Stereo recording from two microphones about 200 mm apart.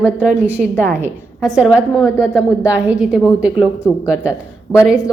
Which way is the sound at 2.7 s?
5° right (ahead or behind).